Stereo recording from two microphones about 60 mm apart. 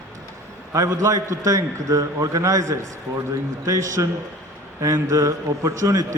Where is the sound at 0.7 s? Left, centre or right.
Right.